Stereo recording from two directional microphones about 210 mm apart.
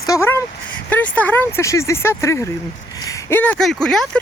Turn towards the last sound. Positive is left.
turn(degrees=5)  # may be behind; listen again after turning